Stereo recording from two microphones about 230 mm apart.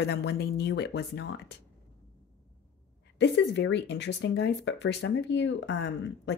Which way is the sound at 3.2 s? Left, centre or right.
Left.